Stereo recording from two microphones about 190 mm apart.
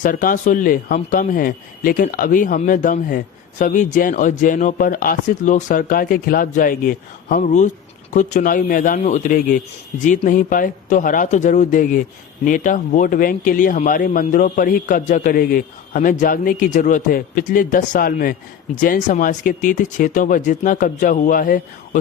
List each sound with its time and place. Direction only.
0.0 s a man's voice: 45° left (ahead or behind)